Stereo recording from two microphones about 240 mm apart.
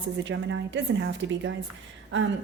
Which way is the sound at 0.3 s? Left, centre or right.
Right.